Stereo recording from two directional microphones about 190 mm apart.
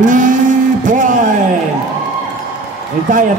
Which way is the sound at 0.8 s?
40° right (ahead or behind).